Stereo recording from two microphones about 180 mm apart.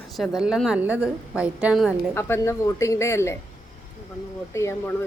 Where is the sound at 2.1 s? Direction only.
15° left (ahead or behind).